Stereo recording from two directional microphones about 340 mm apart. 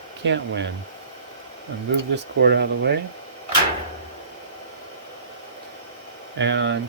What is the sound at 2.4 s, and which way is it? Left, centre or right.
Speech, right.